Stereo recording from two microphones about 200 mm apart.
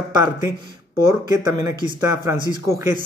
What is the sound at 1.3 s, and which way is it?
Speech, 20° right (ahead or behind).